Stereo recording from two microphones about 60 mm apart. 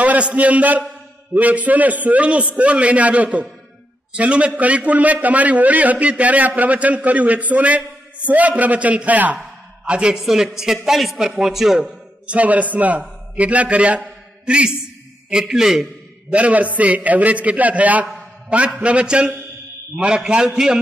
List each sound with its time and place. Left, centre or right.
0.0 s a man's voice: right; by 11.8 s centre
11.8 s a man's voice: right; by 15.9 s centre
16.3 s a man's voice: right